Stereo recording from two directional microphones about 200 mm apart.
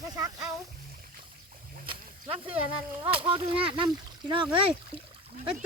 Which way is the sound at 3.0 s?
25° right (ahead or behind).